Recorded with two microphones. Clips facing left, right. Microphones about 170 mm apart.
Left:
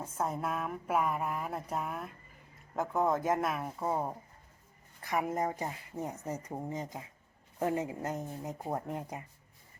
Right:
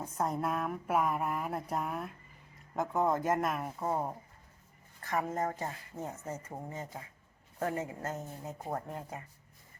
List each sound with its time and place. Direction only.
0.0 s speech: 5° left (ahead or behind)
5.0 s speech: 15° left (ahead or behind)